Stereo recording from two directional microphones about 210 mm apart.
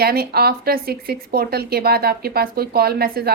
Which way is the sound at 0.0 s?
45° right (ahead or behind).